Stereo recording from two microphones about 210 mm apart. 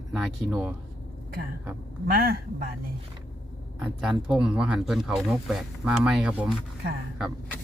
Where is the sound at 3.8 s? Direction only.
5° right (ahead or behind).